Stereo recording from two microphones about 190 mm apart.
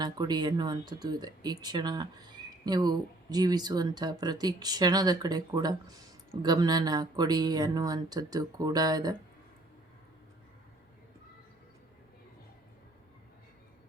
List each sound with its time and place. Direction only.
0.0 s speech: 20° right (ahead or behind)